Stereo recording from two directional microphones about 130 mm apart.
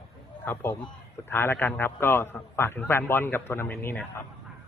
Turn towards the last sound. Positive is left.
turn(degrees=15)  # may be behind; listen again after turning